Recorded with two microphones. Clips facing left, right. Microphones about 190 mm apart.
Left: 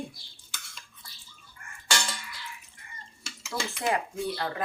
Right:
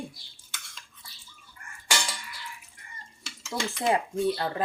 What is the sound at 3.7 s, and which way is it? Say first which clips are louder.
Speech: right 4 dB; 25° right (ahead or behind).